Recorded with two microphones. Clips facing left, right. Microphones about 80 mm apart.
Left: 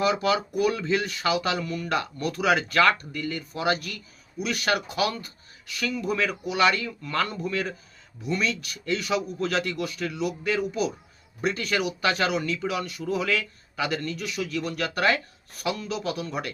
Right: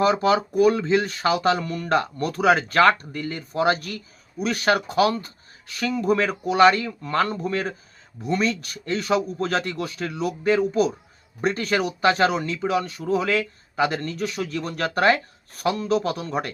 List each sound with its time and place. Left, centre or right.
0.0 s speech: right